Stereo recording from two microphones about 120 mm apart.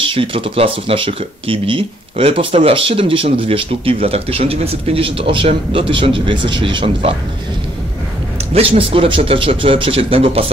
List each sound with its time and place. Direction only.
0.1 s speech: 50° right (ahead or behind)
8.5 s speech: 50° right (ahead or behind)